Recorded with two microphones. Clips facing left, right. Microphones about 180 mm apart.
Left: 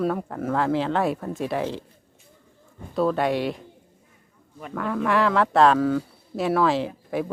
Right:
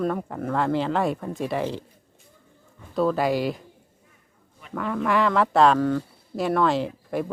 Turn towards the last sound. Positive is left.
turn(degrees=0)  # may be behind; listen again after turning